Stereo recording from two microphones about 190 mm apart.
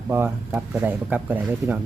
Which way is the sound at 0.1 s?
10° right (ahead or behind).